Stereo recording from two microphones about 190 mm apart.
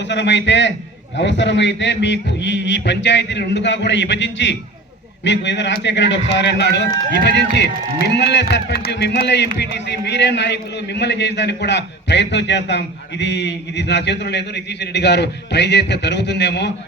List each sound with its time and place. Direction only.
0.0 s a man's voice: 65° left (ahead or behind)